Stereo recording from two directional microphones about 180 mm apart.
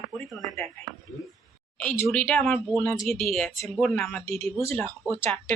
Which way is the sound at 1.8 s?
10° left (ahead or behind).